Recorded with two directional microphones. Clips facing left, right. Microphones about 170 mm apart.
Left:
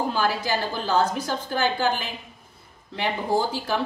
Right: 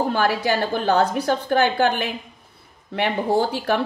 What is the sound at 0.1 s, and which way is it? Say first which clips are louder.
Speech: right 4 dB; 60° right (ahead or behind).